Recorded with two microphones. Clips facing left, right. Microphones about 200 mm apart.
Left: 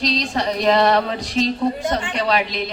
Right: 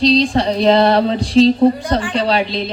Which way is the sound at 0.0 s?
30° right (ahead or behind).